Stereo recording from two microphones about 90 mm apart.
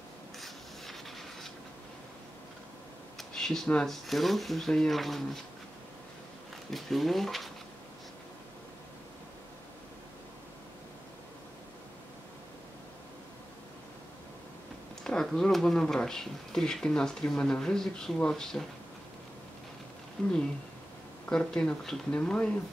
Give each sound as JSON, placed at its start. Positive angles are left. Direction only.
{"t": 0.4, "sound": "rub", "side_deg": 0}
{"t": 3.2, "sound": "speech", "side_deg": 5}
{"t": 6.7, "sound": "speech", "side_deg": 0}
{"t": 15.0, "sound": "speech", "side_deg": 5}
{"t": 20.2, "sound": "speech", "side_deg": 5}